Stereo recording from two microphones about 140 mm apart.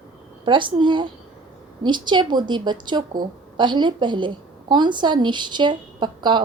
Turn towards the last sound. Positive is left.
turn(degrees=-35)  # may be behind; listen again after turning